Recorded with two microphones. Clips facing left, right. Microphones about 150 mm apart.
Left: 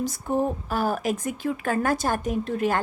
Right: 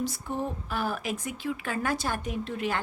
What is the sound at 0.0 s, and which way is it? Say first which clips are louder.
Speech: left 6 dB; 45° left (ahead or behind).